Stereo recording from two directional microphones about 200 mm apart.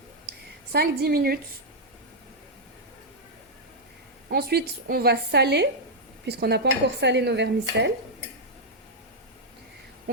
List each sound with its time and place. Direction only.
0.7 s a woman's voice: 50° right (ahead or behind)
4.3 s a woman's voice: 50° right (ahead or behind)